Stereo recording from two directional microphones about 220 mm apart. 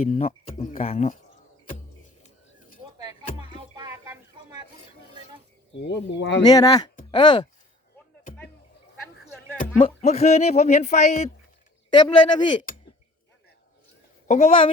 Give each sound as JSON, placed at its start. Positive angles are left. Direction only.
{"t": 0.0, "sound": "speech", "side_deg": 30}
{"t": 3.0, "sound": "music", "side_deg": -20}
{"t": 5.7, "sound": "speech", "side_deg": 50}
{"t": 6.4, "sound": "speech", "side_deg": 15}
{"t": 9.7, "sound": "speech", "side_deg": 30}
{"t": 11.9, "sound": "speech", "side_deg": 20}
{"t": 14.3, "sound": "speech", "side_deg": 30}